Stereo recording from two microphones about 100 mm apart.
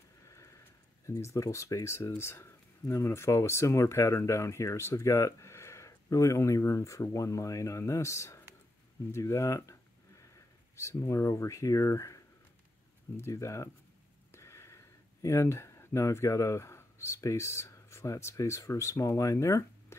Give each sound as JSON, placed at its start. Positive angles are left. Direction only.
{"t": 1.0, "sound": "speech", "side_deg": 30}
{"t": 10.8, "sound": "speech", "side_deg": 30}
{"t": 13.2, "sound": "speech", "side_deg": 30}